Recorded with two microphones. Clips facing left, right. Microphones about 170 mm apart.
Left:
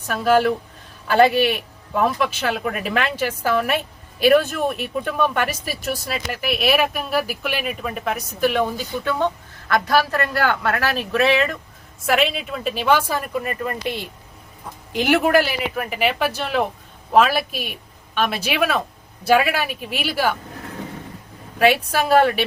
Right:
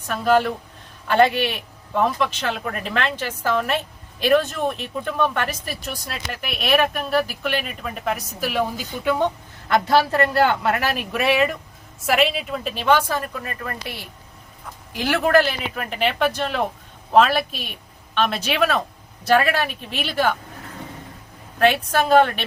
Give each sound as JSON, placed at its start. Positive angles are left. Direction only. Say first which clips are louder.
{"t": 0.1, "sound": "a man's voice", "louder": "left 2 dB", "side_deg": 5}
{"t": 9.0, "sound": "a woman's voice", "louder": "right 2 dB", "side_deg": -15}
{"t": 21.6, "sound": "a man's voice", "louder": "left 1 dB", "side_deg": 10}